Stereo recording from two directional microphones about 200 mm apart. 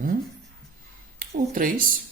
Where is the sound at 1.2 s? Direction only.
45° right (ahead or behind).